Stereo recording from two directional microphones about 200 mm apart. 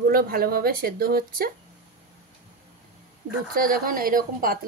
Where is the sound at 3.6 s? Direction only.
45° right (ahead or behind).